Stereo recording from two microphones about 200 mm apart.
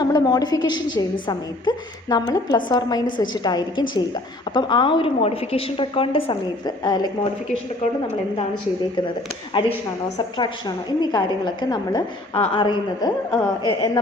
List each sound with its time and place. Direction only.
0.0 s a woman's voice: 20° left (ahead or behind)
7.8 s a woman's voice: 30° left (ahead or behind)
9.6 s a woman's voice: 25° left (ahead or behind)